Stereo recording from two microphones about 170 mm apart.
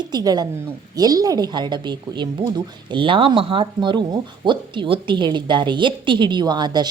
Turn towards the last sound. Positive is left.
turn(degrees=-25)  # may be behind; listen again after turning